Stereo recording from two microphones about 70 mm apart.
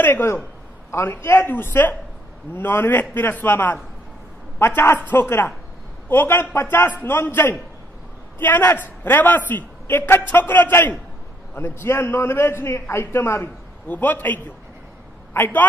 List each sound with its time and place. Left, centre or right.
0.0 s a man's voice: left
4.6 s a man's voice: left